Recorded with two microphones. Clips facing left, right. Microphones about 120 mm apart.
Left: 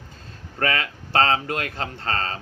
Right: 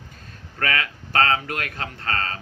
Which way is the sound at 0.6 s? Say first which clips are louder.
Left 1 dB; 30° left (ahead or behind).